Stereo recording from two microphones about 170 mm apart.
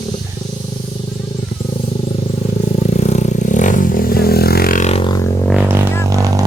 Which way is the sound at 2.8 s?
40° left (ahead or behind).